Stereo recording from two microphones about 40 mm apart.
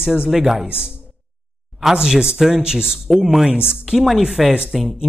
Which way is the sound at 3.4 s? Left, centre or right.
Right.